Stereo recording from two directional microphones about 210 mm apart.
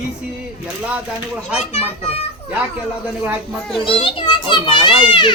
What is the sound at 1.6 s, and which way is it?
Speech, 30° left (ahead or behind).